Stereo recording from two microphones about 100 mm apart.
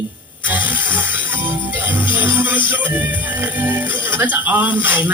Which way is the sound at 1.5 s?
20° right (ahead or behind).